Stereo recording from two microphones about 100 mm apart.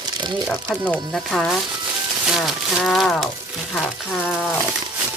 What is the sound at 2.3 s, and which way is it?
Speech, centre (ahead or behind).